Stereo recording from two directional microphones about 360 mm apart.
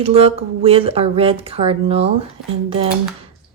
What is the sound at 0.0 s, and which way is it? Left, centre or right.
A woman's voice, centre.